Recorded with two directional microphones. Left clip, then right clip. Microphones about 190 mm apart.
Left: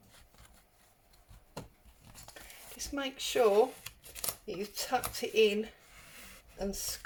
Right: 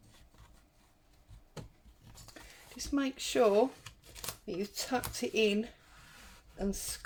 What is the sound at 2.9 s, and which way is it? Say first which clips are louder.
Speech: right 1 dB; 40° right (ahead or behind).